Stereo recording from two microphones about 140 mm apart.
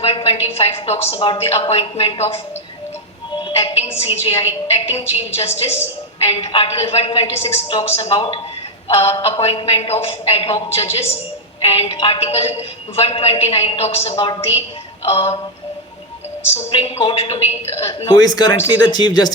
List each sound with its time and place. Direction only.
0.0 s a woman's voice: 40° left (ahead or behind)
3.3 s music: 40° left (ahead or behind)
4.0 s a woman's voice: 45° left (ahead or behind)
16.6 s a woman's voice: 45° left (ahead or behind)
18.2 s speech: 30° left (ahead or behind)